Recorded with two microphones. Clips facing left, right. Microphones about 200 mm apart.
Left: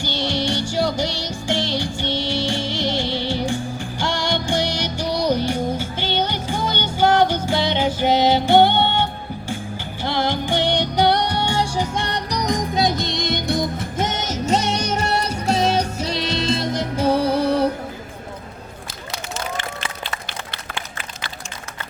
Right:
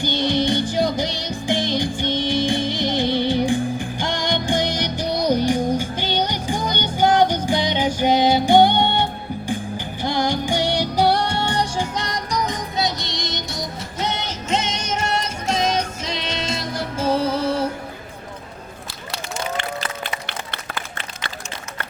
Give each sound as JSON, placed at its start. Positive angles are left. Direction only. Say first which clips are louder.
{"t": 0.0, "sound": "music", "louder": "right 3 dB", "side_deg": -20}
{"t": 11.4, "sound": "music", "louder": "left 1 dB", "side_deg": 20}
{"t": 12.1, "sound": "music", "louder": "left 3 dB", "side_deg": 35}
{"t": 16.7, "sound": "music", "louder": "even", "side_deg": 15}